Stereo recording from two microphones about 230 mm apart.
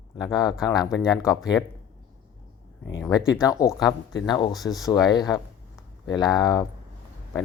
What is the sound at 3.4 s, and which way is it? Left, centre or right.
Speech, centre.